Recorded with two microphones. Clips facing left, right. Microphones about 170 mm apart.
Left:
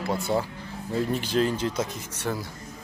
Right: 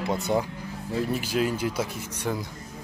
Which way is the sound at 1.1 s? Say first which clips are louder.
Left 2 dB; 10° right (ahead or behind).